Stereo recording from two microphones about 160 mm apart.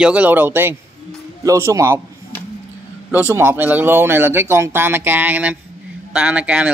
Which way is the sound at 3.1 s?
15° right (ahead or behind).